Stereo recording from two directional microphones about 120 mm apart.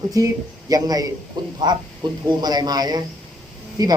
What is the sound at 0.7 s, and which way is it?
A man's voice, 30° right (ahead or behind).